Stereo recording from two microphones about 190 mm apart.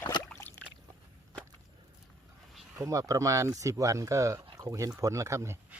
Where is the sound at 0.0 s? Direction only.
20° left (ahead or behind).